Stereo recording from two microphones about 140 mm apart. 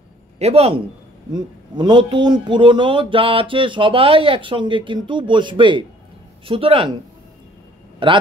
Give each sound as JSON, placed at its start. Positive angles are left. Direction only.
{"t": 0.4, "sound": "a man's voice", "side_deg": -45}
{"t": 1.3, "sound": "a man's voice", "side_deg": -35}
{"t": 8.0, "sound": "a man's voice", "side_deg": -35}